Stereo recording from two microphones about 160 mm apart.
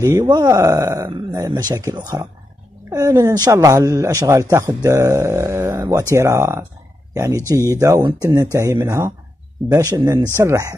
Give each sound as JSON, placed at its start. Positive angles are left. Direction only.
{"t": 0.0, "sound": "speech", "side_deg": -25}